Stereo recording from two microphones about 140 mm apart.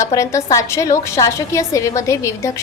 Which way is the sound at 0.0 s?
20° left (ahead or behind).